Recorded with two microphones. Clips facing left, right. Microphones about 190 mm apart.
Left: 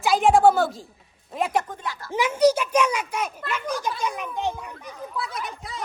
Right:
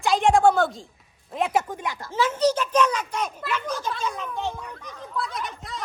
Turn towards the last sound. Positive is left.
turn(degrees=0)  # may be behind; listen again after turning